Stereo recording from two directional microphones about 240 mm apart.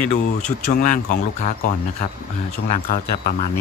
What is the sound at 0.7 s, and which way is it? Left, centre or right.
Speech, left.